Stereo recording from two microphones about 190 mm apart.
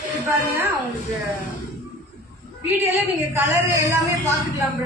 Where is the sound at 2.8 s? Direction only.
10° right (ahead or behind).